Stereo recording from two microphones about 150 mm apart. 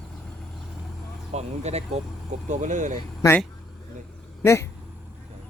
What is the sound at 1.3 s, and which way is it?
Speech, 45° right (ahead or behind).